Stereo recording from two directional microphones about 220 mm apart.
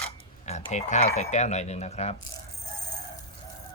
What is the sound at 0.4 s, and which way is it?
Speech, 30° left (ahead or behind).